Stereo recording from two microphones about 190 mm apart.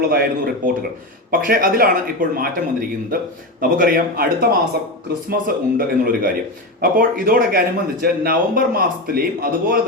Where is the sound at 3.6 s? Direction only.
50° right (ahead or behind).